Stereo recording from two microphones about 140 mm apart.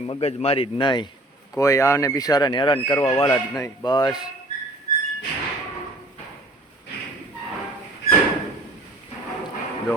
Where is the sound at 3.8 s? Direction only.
30° left (ahead or behind).